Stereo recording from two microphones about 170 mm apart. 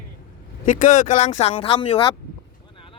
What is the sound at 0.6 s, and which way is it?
Speech, 45° left (ahead or behind).